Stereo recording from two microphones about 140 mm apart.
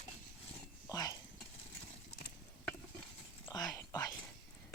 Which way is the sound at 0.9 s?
25° left (ahead or behind).